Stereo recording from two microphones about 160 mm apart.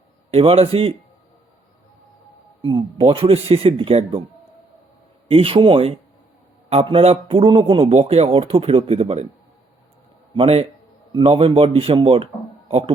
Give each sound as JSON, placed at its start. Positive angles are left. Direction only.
{"t": 0.3, "sound": "a man's voice", "side_deg": -40}
{"t": 2.6, "sound": "a man's voice", "side_deg": -30}
{"t": 5.3, "sound": "a man's voice", "side_deg": -35}
{"t": 10.3, "sound": "a man's voice", "side_deg": -40}